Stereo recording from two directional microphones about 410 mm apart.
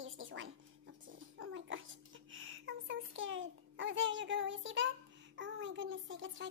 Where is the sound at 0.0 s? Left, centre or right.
Right.